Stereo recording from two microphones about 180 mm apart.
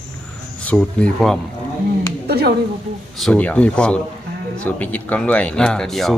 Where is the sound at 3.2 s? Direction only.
5° left (ahead or behind).